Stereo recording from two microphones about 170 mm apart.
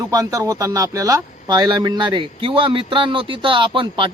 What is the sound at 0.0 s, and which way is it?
A man's voice, 20° right (ahead or behind).